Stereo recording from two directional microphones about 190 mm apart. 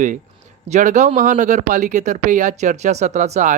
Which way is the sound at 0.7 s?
40° right (ahead or behind).